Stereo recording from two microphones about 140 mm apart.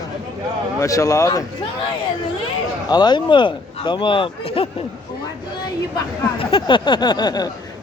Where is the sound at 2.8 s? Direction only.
30° left (ahead or behind).